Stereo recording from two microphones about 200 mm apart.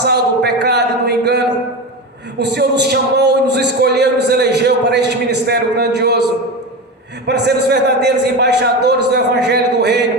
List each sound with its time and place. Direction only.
0.0 s a sound: 55° right (ahead or behind)
2.4 s a man's voice: 55° right (ahead or behind)
7.3 s a man's voice: 55° right (ahead or behind)